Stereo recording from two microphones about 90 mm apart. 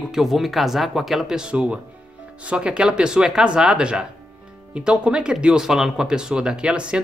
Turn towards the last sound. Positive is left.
turn(degrees=-10)  # may be behind; listen again after turning